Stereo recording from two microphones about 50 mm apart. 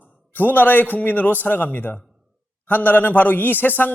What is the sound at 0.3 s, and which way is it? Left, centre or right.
A man's voice, left.